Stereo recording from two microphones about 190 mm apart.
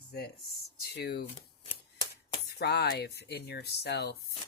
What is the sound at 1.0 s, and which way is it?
Speech, 60° left (ahead or behind).